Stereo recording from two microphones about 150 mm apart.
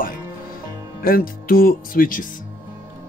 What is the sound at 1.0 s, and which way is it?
Speech, 75° left (ahead or behind).